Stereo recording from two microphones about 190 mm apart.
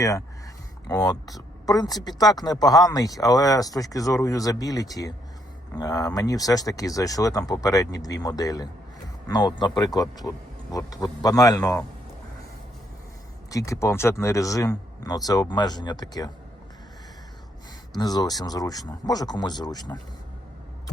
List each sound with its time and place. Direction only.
0.9 s speech: 20° left (ahead or behind)
13.5 s speech: 15° left (ahead or behind)
17.9 s speech: 20° left (ahead or behind)